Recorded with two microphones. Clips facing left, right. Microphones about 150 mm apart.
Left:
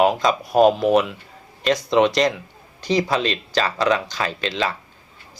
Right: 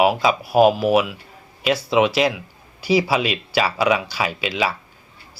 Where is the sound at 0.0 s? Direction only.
5° right (ahead or behind).